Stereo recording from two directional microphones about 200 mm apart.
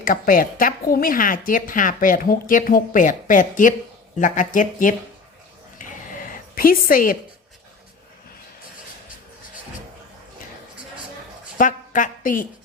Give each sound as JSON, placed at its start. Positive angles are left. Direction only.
{"t": 0.0, "sound": "a woman's voice", "side_deg": 45}
{"t": 5.8, "sound": "a sound", "side_deg": 40}
{"t": 11.5, "sound": "a woman's voice", "side_deg": 40}